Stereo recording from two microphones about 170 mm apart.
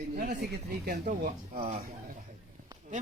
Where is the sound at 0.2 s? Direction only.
70° right (ahead or behind).